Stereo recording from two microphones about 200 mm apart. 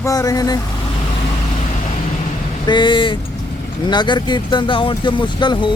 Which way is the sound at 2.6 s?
25° left (ahead or behind).